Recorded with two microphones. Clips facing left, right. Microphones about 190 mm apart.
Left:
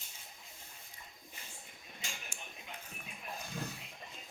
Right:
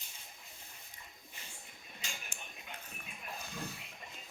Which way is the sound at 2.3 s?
10° left (ahead or behind).